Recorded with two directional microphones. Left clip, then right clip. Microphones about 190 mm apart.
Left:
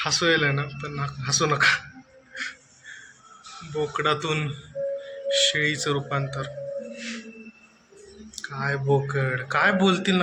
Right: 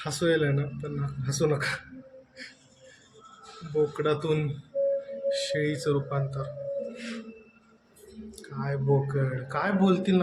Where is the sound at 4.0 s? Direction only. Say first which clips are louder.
Left 3 dB; 15° right (ahead or behind).